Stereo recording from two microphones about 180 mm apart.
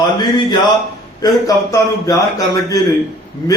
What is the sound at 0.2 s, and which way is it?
A man's voice, 25° left (ahead or behind).